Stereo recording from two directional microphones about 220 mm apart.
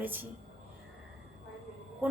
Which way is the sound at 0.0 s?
10° right (ahead or behind).